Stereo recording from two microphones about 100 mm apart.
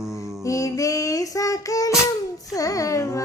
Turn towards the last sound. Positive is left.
turn(degrees=30)  # may be behind; listen again after turning